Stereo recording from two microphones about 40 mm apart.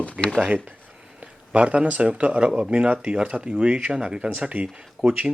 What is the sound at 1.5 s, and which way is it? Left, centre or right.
Speech, right.